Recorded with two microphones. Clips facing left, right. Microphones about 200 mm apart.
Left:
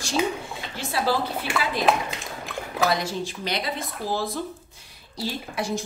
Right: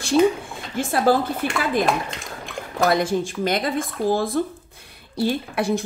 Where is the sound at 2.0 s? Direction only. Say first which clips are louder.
Even; centre (ahead or behind).